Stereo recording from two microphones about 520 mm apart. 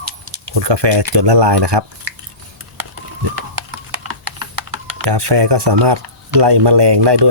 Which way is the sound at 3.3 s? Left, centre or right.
Right.